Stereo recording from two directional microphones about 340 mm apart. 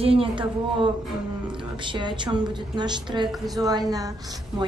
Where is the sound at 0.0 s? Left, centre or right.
Centre.